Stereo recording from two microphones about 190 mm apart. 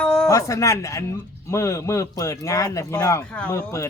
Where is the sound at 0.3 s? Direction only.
15° left (ahead or behind).